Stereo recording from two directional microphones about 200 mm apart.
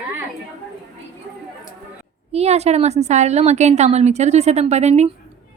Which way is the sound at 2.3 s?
30° right (ahead or behind).